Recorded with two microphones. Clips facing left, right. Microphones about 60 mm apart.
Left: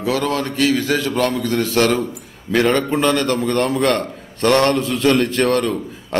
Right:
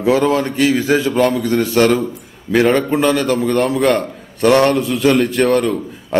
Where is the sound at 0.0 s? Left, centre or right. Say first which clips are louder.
Right 6 dB; right.